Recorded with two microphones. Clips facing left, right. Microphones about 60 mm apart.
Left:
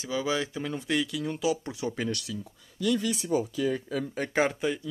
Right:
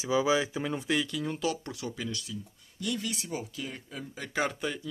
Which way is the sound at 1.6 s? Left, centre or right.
Left.